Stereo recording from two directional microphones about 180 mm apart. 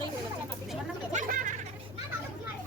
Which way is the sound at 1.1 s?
45° right (ahead or behind).